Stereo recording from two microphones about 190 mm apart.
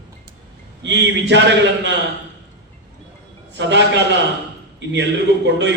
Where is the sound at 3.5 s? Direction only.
70° right (ahead or behind).